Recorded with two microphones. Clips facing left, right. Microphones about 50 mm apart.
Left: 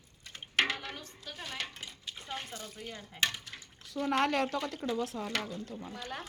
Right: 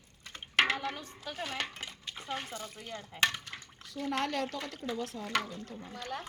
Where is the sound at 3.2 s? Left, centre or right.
Right.